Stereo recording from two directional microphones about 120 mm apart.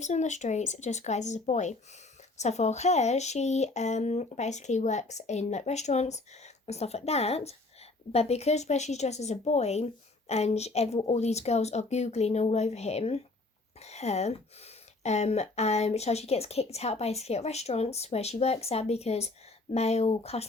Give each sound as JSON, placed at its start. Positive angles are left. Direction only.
{"t": 0.0, "sound": "speech", "side_deg": 75}
{"t": 2.4, "sound": "speech", "side_deg": 65}